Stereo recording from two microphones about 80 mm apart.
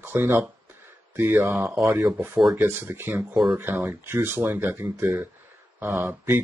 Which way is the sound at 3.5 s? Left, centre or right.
Right.